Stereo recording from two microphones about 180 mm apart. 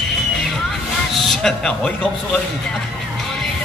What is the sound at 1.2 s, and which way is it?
Speech, centre (ahead or behind).